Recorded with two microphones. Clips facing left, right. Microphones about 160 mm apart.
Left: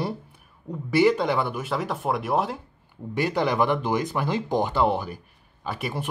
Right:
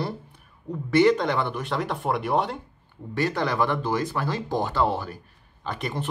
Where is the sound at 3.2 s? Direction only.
15° left (ahead or behind).